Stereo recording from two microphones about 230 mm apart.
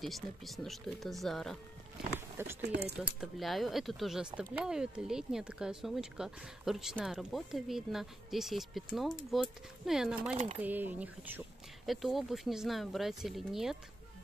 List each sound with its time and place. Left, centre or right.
0.0 s speech: centre
2.1 s speech: centre
2.6 s speech: right
3.2 s speech: centre
10.3 s speech: right
10.6 s speech: centre